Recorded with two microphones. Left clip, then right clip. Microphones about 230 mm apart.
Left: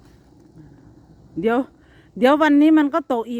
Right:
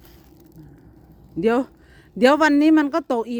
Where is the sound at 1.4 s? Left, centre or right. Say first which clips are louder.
Even; centre.